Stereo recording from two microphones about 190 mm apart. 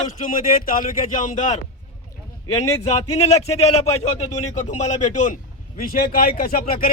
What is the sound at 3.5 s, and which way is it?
A man's voice, 35° left (ahead or behind).